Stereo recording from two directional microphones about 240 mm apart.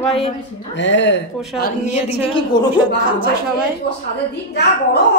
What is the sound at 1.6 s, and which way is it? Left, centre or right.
Speech, left.